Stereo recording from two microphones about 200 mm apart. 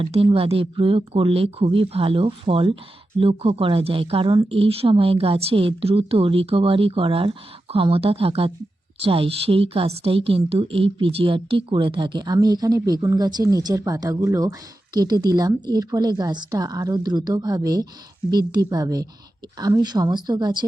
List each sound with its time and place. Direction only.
0.0 s a woman's voice: 25° right (ahead or behind)